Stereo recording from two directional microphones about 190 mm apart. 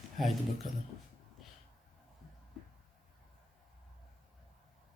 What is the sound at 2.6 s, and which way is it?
Music, centre (ahead or behind).